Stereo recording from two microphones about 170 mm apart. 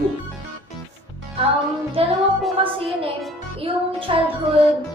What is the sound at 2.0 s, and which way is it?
Music, 35° right (ahead or behind).